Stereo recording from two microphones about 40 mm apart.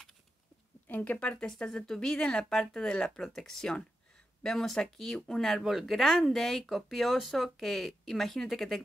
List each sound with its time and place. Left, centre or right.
0.8 s speech: left
1.6 s speech: left; by 5.6 s centre
5.6 s speech: centre
6.2 s speech: centre